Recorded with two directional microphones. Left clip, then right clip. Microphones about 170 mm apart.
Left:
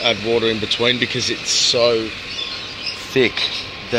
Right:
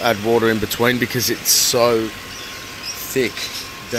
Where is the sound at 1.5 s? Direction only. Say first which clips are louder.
Even; 35° right (ahead or behind).